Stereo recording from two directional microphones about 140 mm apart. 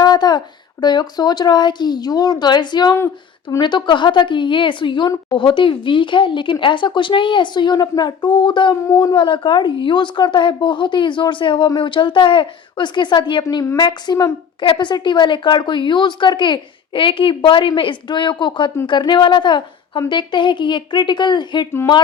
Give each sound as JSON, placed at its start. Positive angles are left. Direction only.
{"t": 0.0, "sound": "a woman's voice", "side_deg": 30}
{"t": 9.1, "sound": "a woman's voice", "side_deg": 35}